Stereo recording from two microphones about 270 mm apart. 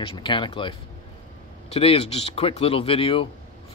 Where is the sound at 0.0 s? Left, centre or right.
Centre.